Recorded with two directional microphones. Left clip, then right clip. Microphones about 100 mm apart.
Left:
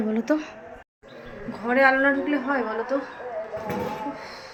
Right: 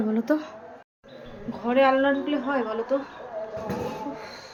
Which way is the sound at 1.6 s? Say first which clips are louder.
Left 1 dB; 5° right (ahead or behind).